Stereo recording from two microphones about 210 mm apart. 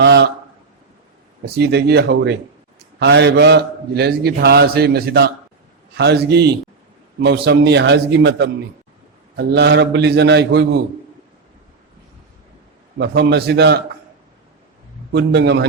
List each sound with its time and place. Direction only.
0.0 s a man's voice: 55° right (ahead or behind)
1.5 s a man's voice: 55° right (ahead or behind)
13.0 s a man's voice: 50° right (ahead or behind)
15.1 s a man's voice: 55° right (ahead or behind)